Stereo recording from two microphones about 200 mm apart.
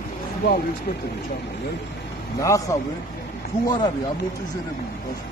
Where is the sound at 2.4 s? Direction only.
15° left (ahead or behind).